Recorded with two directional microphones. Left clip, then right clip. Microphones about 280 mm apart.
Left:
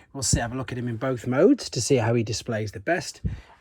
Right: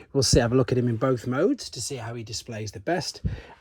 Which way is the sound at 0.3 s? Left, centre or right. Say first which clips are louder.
Right 6 dB; centre.